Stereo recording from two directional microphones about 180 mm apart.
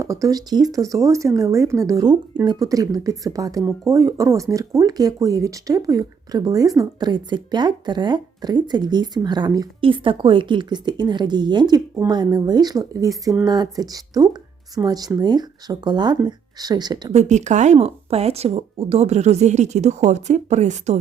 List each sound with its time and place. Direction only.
0.0 s speech: 15° right (ahead or behind)
17.1 s speech: 40° right (ahead or behind)